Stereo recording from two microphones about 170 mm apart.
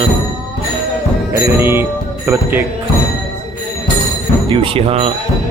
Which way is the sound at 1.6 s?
15° right (ahead or behind).